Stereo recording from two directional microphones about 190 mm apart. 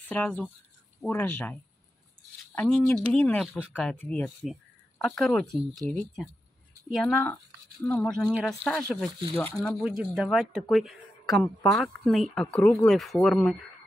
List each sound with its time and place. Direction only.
0.1 s speech: 10° left (ahead or behind)
5.5 s speech: 20° right (ahead or behind)
5.9 s speech: 5° left (ahead or behind)